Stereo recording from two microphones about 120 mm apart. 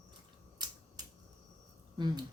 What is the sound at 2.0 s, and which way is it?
Speech, 35° right (ahead or behind).